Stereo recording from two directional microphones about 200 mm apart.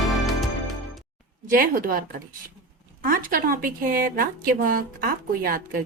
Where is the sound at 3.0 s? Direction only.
45° right (ahead or behind).